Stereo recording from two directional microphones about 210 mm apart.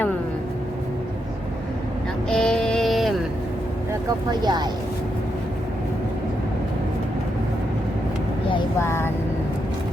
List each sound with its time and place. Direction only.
2.3 s music: 5° left (ahead or behind)
4.3 s speech: 20° right (ahead or behind)
8.8 s speech: 10° left (ahead or behind)